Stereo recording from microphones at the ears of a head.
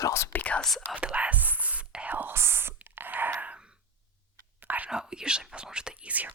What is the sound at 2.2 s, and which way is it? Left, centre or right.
Whispering, right.